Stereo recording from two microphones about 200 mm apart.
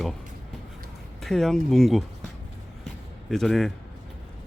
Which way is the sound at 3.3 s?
Centre (ahead or behind).